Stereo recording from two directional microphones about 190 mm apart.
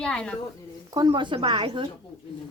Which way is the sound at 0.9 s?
20° right (ahead or behind).